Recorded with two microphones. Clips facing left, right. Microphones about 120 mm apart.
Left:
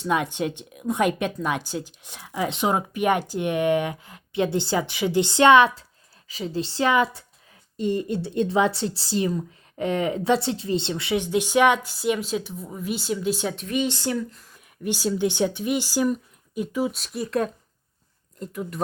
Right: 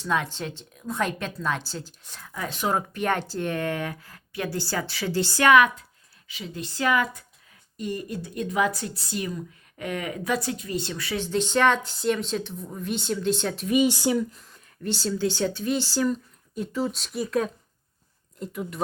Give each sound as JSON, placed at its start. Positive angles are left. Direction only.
{"t": 0.1, "sound": "a woman's voice", "side_deg": 15}
{"t": 13.7, "sound": "speech", "side_deg": -10}
{"t": 14.5, "sound": "speech", "side_deg": 10}
{"t": 17.0, "sound": "speech", "side_deg": 0}